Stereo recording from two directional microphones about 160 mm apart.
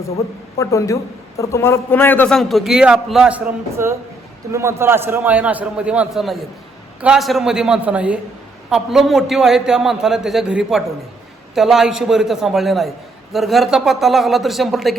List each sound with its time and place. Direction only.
0.6 s a man's voice: 20° left (ahead or behind); by 14.9 s centre (ahead or behind)